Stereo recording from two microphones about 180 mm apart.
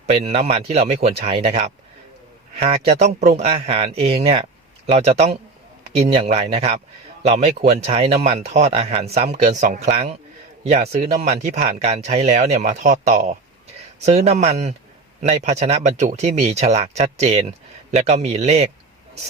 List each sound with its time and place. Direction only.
0.0 s speech: 35° right (ahead or behind)